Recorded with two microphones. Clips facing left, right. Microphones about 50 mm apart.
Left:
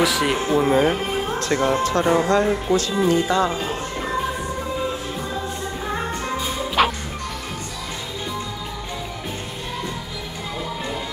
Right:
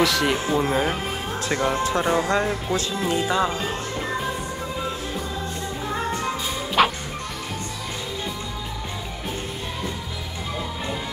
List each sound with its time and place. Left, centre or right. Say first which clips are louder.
0.0 s speech: left 1 dB; centre
1.4 s speech: left 2 dB; centre
1.8 s speech: left 3 dB; centre
3.2 s speech: left 2 dB; centre
3.4 s music: left 2 dB; centre
6.8 s music: even; centre